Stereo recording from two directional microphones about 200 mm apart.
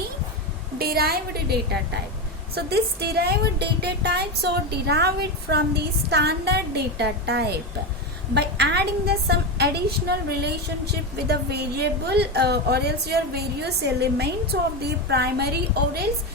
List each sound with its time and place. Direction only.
0.8 s a woman's voice: 50° right (ahead or behind)